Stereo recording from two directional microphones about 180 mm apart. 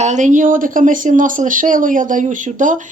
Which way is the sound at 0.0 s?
40° right (ahead or behind).